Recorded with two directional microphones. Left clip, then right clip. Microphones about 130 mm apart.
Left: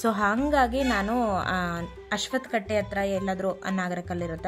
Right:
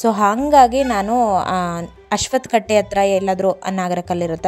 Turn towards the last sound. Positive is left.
turn(degrees=-50)  # may be behind; listen again after turning